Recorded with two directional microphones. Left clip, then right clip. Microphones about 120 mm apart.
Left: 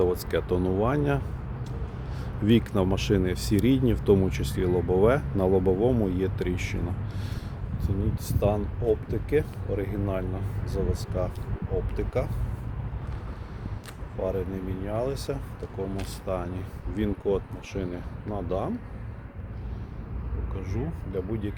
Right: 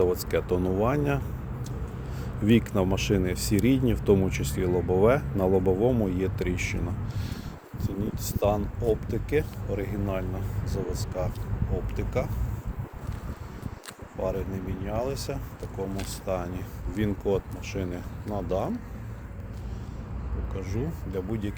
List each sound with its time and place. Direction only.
0.0 s speech: 30° left (ahead or behind)
2.5 s speech: 35° left (ahead or behind)
7.8 s speech: 10° left (ahead or behind); by 12.3 s 45° left (ahead or behind)
14.2 s speech: 40° left (ahead or behind)
15.8 s speech: 35° left (ahead or behind)
16.2 s speech: 20° left (ahead or behind)
20.6 s speech: 5° left (ahead or behind)